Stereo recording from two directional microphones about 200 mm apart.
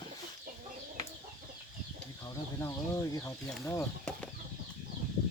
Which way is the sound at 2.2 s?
15° left (ahead or behind).